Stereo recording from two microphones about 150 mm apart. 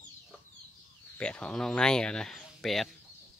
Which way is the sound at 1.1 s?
10° left (ahead or behind).